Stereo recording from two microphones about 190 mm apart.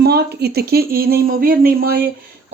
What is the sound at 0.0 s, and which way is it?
Speech, 60° right (ahead or behind).